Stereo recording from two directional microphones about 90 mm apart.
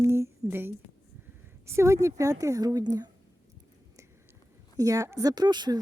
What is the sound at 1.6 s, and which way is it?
Speech, 30° right (ahead or behind).